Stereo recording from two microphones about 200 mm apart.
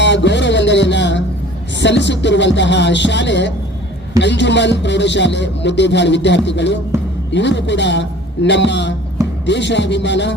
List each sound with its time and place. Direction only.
0.0 s music: 60° left (ahead or behind)
1.8 s speech: 60° left (ahead or behind)